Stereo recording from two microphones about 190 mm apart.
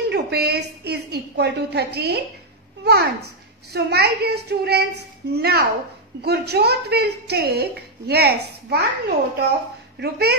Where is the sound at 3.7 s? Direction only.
55° right (ahead or behind).